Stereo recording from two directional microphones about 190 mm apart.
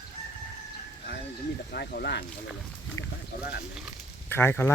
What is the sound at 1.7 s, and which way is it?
Speech, 55° left (ahead or behind).